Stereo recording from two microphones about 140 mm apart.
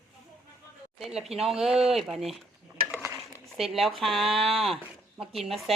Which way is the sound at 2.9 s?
15° right (ahead or behind).